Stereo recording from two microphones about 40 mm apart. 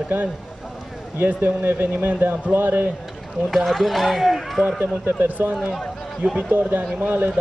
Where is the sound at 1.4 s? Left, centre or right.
Right.